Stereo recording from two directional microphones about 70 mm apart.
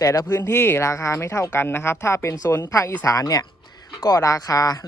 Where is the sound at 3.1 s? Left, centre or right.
Left.